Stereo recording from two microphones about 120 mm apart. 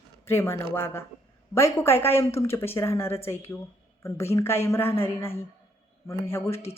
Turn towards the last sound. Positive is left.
turn(degrees=20)  # may be behind; listen again after turning